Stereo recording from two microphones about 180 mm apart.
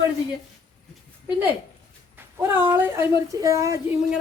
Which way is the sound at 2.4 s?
10° right (ahead or behind).